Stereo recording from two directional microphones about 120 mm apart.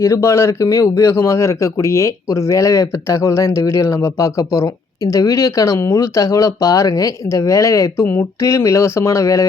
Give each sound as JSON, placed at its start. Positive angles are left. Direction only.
{"t": 0.0, "sound": "speech", "side_deg": 25}